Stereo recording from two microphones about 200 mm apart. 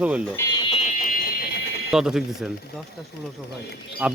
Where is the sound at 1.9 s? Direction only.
Centre (ahead or behind).